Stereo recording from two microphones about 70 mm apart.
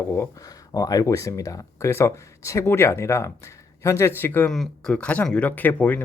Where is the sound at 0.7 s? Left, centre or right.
Left.